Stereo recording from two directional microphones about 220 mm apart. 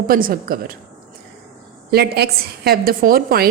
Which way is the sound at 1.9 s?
45° right (ahead or behind).